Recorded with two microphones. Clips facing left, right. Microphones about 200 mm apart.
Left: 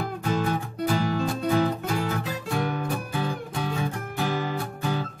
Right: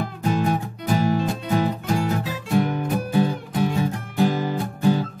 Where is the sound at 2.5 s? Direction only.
20° right (ahead or behind).